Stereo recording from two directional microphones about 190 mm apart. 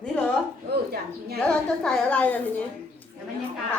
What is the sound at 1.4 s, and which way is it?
A woman's voice, 5° left (ahead or behind).